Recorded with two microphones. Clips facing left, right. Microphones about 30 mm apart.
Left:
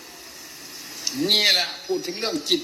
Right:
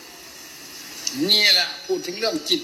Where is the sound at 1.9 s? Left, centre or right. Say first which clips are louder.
Even; right.